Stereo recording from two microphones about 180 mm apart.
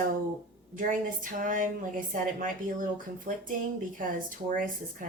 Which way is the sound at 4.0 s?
50° right (ahead or behind).